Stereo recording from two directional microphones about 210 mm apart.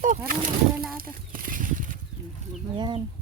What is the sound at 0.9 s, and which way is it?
Horse, 40° right (ahead or behind).